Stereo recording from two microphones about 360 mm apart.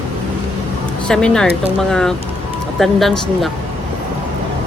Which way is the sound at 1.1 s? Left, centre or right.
Centre.